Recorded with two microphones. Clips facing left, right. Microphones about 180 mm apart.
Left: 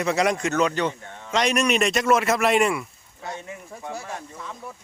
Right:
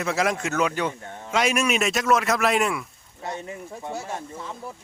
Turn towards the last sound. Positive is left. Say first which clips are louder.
# right 2 dB
turn(degrees=-30)  # may be behind; listen again after turning